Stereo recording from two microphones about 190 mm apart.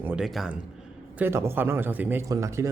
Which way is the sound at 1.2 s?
15° right (ahead or behind).